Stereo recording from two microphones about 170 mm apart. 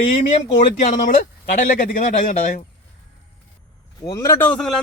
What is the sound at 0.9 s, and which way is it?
Speech, 50° left (ahead or behind).